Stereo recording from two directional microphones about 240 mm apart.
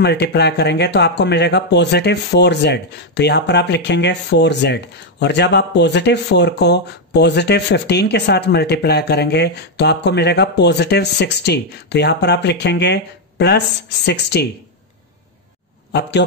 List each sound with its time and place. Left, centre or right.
0.0 s speech: left
15.9 s speech: left